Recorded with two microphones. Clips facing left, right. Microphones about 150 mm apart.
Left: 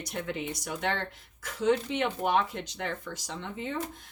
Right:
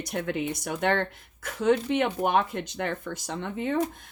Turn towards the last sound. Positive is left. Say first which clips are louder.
# right 7 dB
turn(degrees=-55)  # may be behind; listen again after turning